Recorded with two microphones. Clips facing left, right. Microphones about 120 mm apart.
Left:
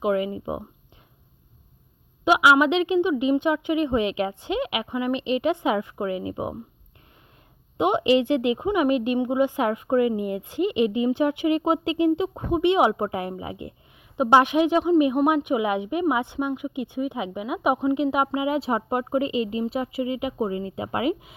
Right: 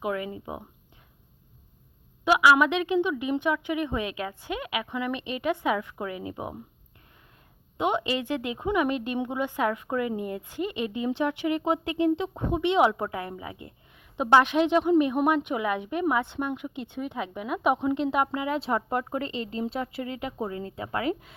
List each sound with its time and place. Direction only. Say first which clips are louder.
0.0 s speech: left 7 dB; 10° left (ahead or behind)
2.2 s speech: left 2 dB; 15° left (ahead or behind)
7.8 s speech: left 7 dB; 15° left (ahead or behind)